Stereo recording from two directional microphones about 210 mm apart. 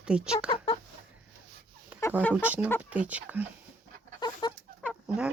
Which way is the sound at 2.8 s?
5° right (ahead or behind).